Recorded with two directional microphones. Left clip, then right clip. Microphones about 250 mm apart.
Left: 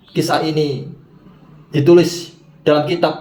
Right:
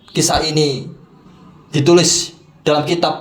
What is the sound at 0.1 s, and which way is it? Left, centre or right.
Speech, right.